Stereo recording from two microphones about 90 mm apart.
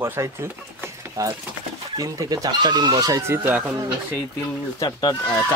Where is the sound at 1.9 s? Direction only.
40° right (ahead or behind).